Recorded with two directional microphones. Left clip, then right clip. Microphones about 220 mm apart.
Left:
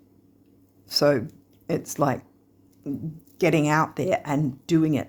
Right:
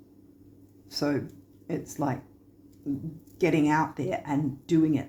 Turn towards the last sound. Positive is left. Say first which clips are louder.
# left 2 dB
turn(degrees=50)  # may be behind; listen again after turning